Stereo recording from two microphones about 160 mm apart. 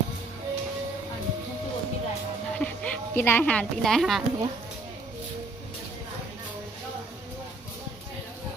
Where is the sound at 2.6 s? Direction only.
10° left (ahead or behind).